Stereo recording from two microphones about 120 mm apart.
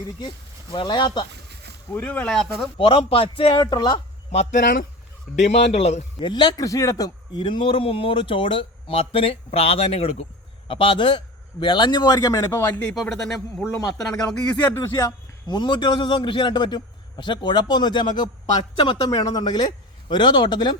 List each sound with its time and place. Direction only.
0.7 s a man's voice: 40° left (ahead or behind)
1.9 s speech: 15° left (ahead or behind)
2.7 s a man's voice: 45° left (ahead or behind)
3.6 s a man's voice: 35° left (ahead or behind)
4.3 s speech: 65° left (ahead or behind)
6.1 s a man's voice: 40° left (ahead or behind); by 10.2 s 55° left (ahead or behind)
10.7 s a man's voice: 45° left (ahead or behind); by 12.8 s 20° left (ahead or behind)
12.9 s a man's voice: 5° left (ahead or behind)
14.7 s a man's voice: 20° left (ahead or behind); by 20.7 s 40° left (ahead or behind)